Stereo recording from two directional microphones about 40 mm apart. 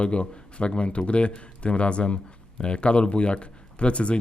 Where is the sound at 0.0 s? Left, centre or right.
Left.